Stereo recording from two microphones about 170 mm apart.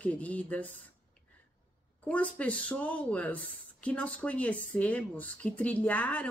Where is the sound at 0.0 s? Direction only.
10° left (ahead or behind).